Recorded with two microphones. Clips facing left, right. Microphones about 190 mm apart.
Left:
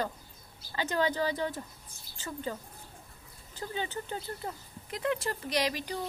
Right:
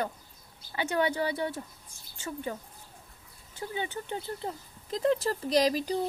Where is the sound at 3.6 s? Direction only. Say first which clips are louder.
Right 1 dB; 15° right (ahead or behind).